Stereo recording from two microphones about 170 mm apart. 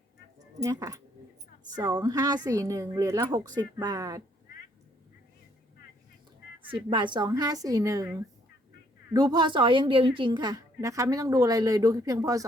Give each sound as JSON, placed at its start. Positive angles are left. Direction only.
{"t": 0.6, "sound": "speech", "side_deg": -20}
{"t": 6.6, "sound": "speech", "side_deg": -30}
{"t": 9.1, "sound": "speech", "side_deg": -25}